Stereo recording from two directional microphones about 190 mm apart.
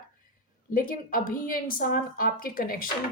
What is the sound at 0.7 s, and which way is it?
A woman's voice, 45° left (ahead or behind).